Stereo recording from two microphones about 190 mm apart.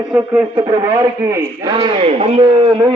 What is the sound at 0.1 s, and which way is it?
A man's voice, 10° right (ahead or behind).